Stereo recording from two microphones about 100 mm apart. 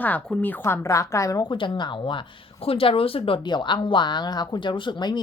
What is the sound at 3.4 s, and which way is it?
Speech, 50° left (ahead or behind).